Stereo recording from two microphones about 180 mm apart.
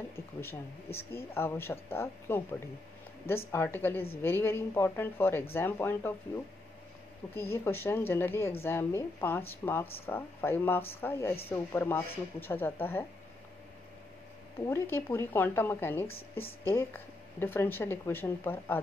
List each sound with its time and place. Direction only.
0.1 s speech: 15° left (ahead or behind)
3.5 s speech: 10° left (ahead or behind)
7.3 s speech: 15° left (ahead or behind)
14.7 s speech: 15° left (ahead or behind)
16.1 s speech: 30° left (ahead or behind)
16.6 s speech: 10° left (ahead or behind)